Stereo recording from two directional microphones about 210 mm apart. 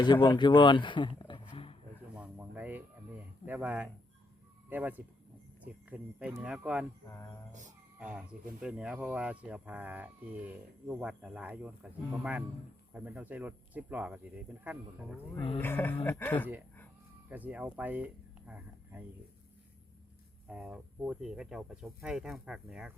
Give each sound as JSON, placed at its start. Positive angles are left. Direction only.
{"t": 0.0, "sound": "speech", "side_deg": 20}
{"t": 2.1, "sound": "a sound", "side_deg": -5}
{"t": 4.7, "sound": "speech", "side_deg": -10}
{"t": 7.1, "sound": "speech", "side_deg": 15}
{"t": 7.9, "sound": "speech", "side_deg": -5}
{"t": 15.4, "sound": "a sound", "side_deg": 25}
{"t": 15.6, "sound": "speech", "side_deg": 10}
{"t": 17.2, "sound": "speech", "side_deg": -5}
{"t": 20.5, "sound": "speech", "side_deg": -5}